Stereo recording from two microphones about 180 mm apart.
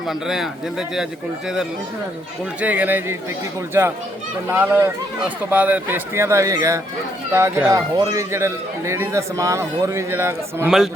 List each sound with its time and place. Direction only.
0.1 s a man's voice: centre (ahead or behind)
2.6 s a man's voice: 10° right (ahead or behind)